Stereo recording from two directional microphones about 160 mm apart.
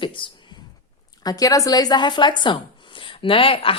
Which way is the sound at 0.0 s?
30° left (ahead or behind).